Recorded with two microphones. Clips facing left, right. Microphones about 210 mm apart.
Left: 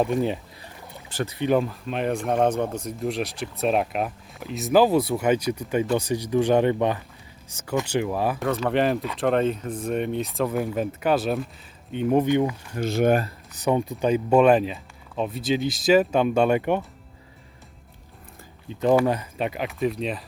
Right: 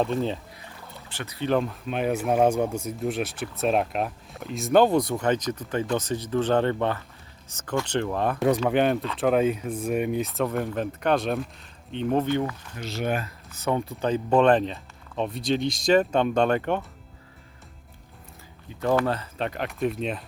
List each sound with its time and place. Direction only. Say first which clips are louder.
0.0 s speech: left 2 dB; 15° left (ahead or behind)
1.1 s speech: left 9 dB; 30° left (ahead or behind)
1.4 s speech: left 2 dB; 10° left (ahead or behind)
1.6 s speech: even; centre (ahead or behind); by 12.5 s 15° left (ahead or behind)
12.7 s speech: left 9 dB; 50° left (ahead or behind)
13.5 s speech: left 3 dB; 15° left (ahead or behind)
18.8 s speech: left 4 dB; 15° left (ahead or behind); by 20.2 s centre (ahead or behind)